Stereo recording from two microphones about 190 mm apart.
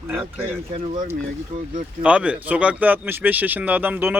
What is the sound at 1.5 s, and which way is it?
Speech, 40° right (ahead or behind).